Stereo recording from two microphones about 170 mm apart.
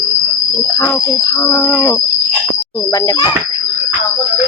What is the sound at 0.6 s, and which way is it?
Speech, 15° left (ahead or behind).